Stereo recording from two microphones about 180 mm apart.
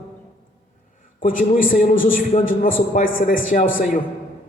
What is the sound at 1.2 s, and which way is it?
A man's voice, 50° left (ahead or behind).